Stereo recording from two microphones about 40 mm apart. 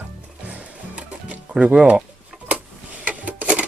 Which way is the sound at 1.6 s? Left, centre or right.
Right.